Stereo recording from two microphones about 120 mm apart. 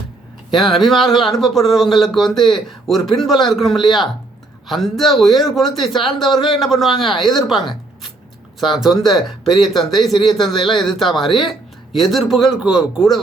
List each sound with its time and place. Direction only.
0.5 s speech: centre (ahead or behind)
5.9 s speech: 45° left (ahead or behind)
6.1 s speech: centre (ahead or behind)
8.7 s speech: centre (ahead or behind)